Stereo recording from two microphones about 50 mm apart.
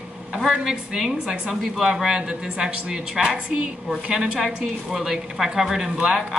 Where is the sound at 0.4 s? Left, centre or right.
Centre.